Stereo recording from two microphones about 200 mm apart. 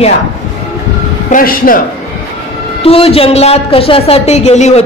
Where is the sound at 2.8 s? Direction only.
30° left (ahead or behind).